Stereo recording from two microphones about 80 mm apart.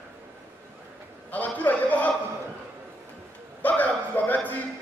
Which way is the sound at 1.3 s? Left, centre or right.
Left.